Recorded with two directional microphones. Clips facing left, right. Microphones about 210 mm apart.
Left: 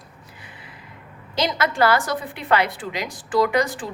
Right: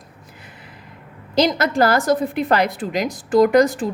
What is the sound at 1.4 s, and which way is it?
A woman's voice, 40° right (ahead or behind).